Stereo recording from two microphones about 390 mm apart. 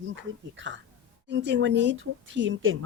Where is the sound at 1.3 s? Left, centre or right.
Right.